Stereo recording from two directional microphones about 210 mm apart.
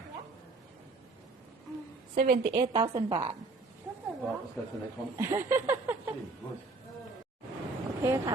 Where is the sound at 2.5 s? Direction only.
20° right (ahead or behind).